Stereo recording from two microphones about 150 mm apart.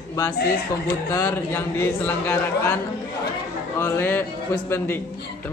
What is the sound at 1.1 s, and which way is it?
A man's voice, 20° left (ahead or behind).